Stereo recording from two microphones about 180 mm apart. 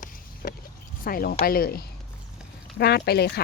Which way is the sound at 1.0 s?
55° left (ahead or behind).